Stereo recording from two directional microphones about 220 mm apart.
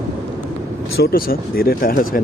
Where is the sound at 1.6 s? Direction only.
40° left (ahead or behind).